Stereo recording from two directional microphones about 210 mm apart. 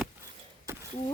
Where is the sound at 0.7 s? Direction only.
15° right (ahead or behind).